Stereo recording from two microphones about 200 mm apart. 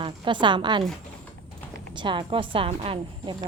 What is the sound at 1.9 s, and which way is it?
A woman's voice, 25° right (ahead or behind).